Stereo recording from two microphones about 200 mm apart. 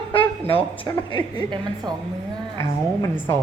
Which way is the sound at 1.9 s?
20° right (ahead or behind).